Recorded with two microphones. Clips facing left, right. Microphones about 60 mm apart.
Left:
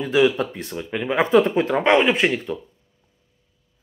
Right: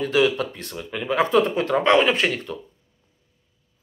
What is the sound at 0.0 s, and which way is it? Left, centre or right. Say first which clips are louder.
Speech: left 2 dB; centre.